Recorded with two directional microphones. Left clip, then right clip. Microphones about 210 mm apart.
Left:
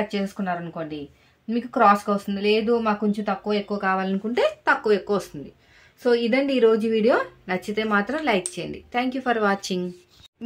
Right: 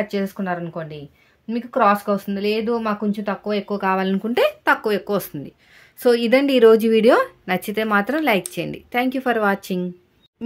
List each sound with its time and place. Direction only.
0.1 s speech: 40° right (ahead or behind)
5.9 s speech: 50° right (ahead or behind)